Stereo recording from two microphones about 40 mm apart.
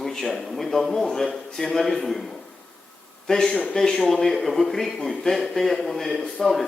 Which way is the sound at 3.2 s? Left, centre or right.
Centre.